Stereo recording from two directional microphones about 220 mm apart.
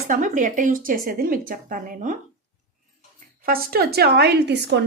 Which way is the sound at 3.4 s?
40° right (ahead or behind).